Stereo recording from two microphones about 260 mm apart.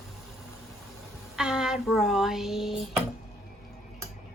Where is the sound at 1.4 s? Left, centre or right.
Centre.